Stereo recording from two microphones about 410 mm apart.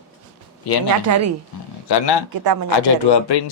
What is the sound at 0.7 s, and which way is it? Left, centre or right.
Speech, left.